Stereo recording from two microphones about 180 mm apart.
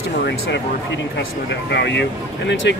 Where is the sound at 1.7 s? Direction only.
70° left (ahead or behind).